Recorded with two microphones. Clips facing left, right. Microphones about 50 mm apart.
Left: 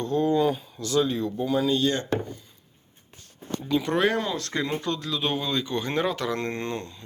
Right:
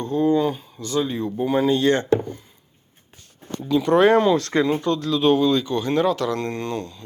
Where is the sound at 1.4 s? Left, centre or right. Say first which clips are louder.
Right 5 dB; right.